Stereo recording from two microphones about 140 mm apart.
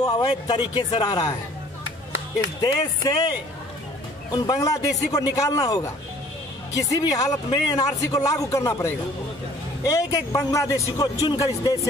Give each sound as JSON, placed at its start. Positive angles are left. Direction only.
{"t": 0.0, "sound": "speech", "side_deg": 35}
{"t": 2.6, "sound": "speech", "side_deg": 25}